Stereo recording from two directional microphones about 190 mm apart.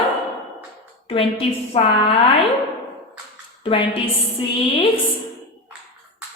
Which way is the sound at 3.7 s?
30° left (ahead or behind).